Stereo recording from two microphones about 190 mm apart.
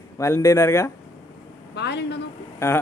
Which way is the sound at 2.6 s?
15° left (ahead or behind).